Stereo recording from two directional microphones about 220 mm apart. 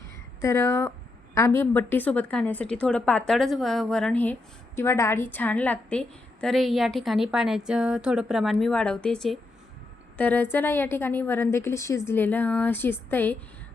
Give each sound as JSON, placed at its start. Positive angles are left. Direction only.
{"t": 0.4, "sound": "a woman's voice", "side_deg": 10}